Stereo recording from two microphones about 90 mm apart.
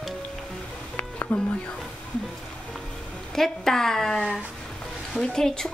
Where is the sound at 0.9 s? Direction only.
20° left (ahead or behind).